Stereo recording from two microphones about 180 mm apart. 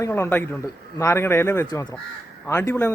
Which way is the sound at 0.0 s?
15° left (ahead or behind).